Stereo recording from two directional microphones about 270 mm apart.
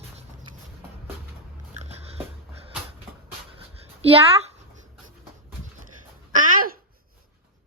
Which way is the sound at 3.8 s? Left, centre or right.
Right.